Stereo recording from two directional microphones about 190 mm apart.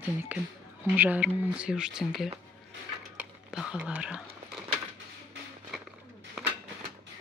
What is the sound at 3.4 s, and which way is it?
Whispering, 5° right (ahead or behind).